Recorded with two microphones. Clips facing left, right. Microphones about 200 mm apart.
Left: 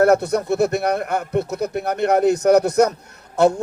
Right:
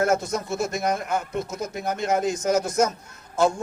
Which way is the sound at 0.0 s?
65° left (ahead or behind).